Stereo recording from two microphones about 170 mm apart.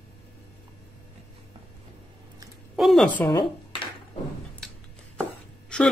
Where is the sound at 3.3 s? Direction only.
25° left (ahead or behind).